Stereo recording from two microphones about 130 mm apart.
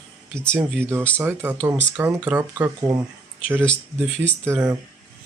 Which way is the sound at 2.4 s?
30° right (ahead or behind).